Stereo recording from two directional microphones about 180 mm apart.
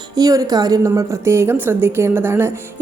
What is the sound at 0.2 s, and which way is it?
A woman's voice, 20° right (ahead or behind).